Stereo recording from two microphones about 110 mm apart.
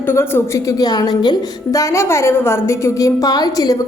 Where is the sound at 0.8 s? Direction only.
40° left (ahead or behind).